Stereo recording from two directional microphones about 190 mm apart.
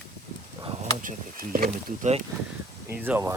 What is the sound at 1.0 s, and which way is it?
Speech, 45° right (ahead or behind).